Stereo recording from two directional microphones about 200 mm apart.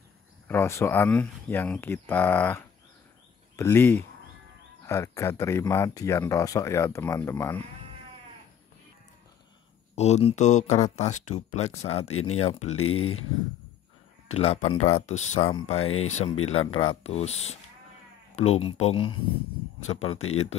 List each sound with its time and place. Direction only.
0.5 s speech: 10° left (ahead or behind)
9.9 s speech: 35° left (ahead or behind)
12.1 s speech: 90° left
12.4 s speech: 30° left (ahead or behind)
12.7 s speech: 90° left
14.3 s speech: 30° left (ahead or behind)
20.2 s speech: 90° left